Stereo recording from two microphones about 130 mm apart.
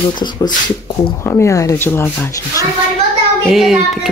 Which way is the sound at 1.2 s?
25° left (ahead or behind).